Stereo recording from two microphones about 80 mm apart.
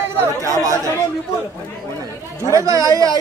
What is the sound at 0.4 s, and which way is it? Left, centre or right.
Speech, right.